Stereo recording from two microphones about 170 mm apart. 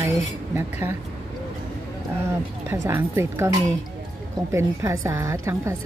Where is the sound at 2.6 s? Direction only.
15° right (ahead or behind).